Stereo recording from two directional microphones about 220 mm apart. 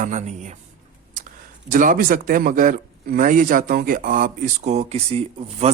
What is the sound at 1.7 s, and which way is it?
A man's voice, 35° right (ahead or behind).